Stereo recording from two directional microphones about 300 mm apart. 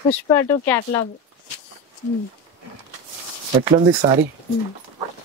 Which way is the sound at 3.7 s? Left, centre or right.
Centre.